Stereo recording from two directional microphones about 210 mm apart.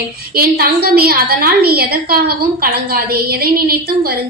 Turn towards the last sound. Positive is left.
turn(degrees=-45)  # may be behind; listen again after turning